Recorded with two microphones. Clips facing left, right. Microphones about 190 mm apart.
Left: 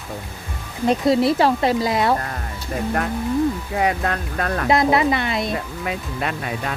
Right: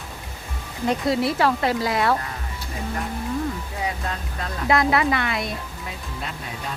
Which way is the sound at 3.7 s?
70° left (ahead or behind).